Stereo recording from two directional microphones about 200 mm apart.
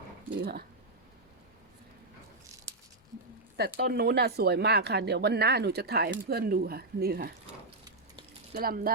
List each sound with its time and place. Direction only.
3.6 s speech: 50° right (ahead or behind)
8.5 s speech: 50° right (ahead or behind)